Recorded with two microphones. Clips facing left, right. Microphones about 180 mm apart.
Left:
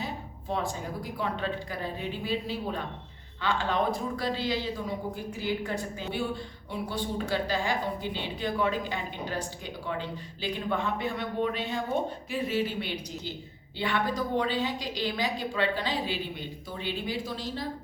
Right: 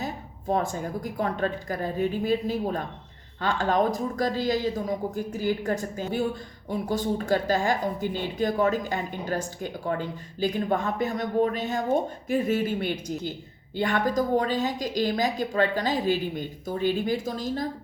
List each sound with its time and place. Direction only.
0.0 s a woman's voice: 45° right (ahead or behind)